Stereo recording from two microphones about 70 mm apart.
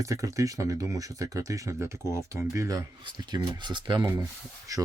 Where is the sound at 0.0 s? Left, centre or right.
Right.